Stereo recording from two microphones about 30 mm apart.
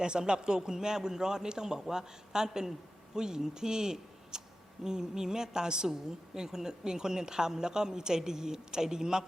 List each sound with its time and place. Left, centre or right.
0.0 s a woman's voice: right